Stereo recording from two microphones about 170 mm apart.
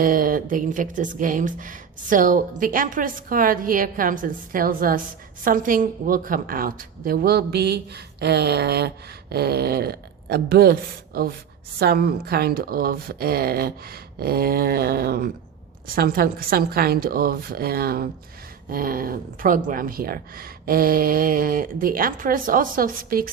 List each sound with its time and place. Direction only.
0.0 s speech: 55° right (ahead or behind)